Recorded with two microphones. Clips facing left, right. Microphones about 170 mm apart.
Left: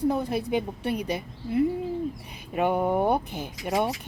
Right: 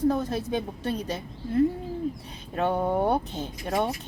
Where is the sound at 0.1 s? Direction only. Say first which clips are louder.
Left 1 dB; 10° left (ahead or behind).